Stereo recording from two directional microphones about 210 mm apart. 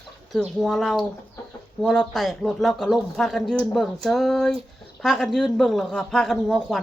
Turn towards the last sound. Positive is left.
turn(degrees=0)  # may be behind; listen again after turning